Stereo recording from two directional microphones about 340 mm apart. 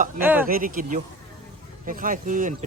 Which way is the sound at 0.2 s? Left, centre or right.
Centre.